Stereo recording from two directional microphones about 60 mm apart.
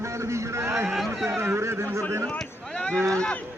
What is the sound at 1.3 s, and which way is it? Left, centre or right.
Speech, right.